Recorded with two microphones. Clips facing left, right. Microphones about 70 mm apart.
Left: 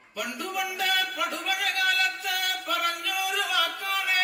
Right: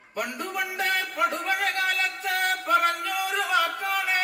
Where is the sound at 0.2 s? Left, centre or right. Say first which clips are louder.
Right 1 dB; right.